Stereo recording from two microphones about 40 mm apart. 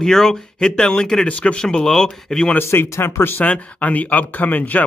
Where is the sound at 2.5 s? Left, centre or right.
Left.